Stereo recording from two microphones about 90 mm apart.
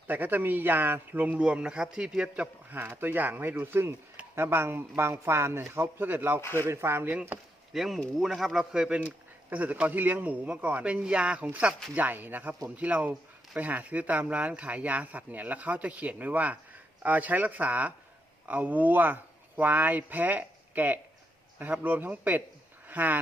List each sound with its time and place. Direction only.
0.1 s a man's voice: 20° right (ahead or behind)
6.4 s speech: 25° left (ahead or behind)
6.7 s a man's voice: 30° right (ahead or behind)
7.1 s speech: 15° right (ahead or behind)
7.7 s a man's voice: centre (ahead or behind); by 23.2 s 20° right (ahead or behind)